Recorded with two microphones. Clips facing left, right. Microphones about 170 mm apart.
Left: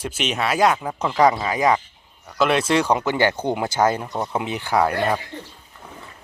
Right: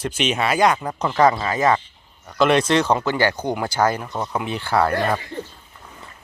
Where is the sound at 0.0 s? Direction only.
5° left (ahead or behind).